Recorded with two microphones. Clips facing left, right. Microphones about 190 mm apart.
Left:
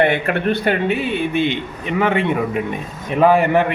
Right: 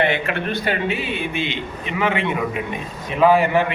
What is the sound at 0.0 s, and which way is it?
A man's voice, 50° left (ahead or behind).